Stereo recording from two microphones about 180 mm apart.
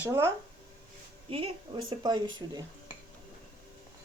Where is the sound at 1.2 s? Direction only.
30° right (ahead or behind).